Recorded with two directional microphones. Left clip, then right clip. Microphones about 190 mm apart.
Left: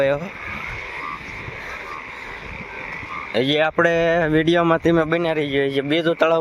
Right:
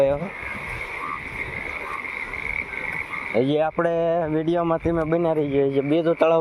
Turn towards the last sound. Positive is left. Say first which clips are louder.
# left 1 dB
turn(degrees=5)  # may be behind; listen again after turning